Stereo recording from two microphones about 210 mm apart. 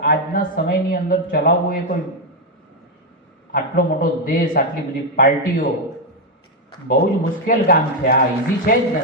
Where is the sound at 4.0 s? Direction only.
40° left (ahead or behind).